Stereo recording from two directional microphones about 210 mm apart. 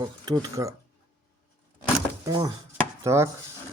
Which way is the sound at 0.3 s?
15° right (ahead or behind).